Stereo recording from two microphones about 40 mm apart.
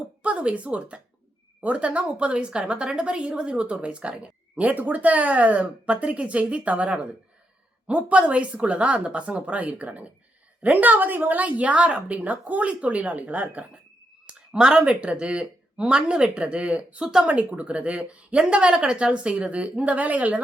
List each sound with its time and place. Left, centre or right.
0.2 s a woman's voice: right
4.1 s speech: right
14.3 s a woman's voice: right
17.0 s speech: centre
17.2 s speech: right